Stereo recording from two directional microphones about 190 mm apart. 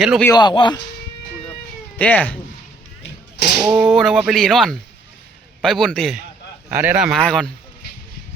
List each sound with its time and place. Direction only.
0.0 s speech: centre (ahead or behind)
0.3 s speech: 20° left (ahead or behind)
2.0 s speech: 10° left (ahead or behind)
3.7 s speech: 5° right (ahead or behind)